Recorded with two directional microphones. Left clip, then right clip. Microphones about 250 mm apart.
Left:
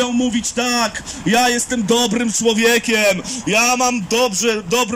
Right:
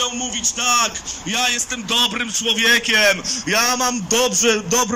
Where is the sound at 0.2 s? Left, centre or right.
Left.